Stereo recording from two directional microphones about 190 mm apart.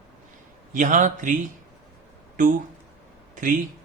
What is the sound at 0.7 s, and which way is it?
Speech, 40° right (ahead or behind).